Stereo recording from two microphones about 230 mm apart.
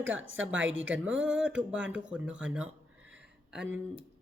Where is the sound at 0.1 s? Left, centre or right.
Right.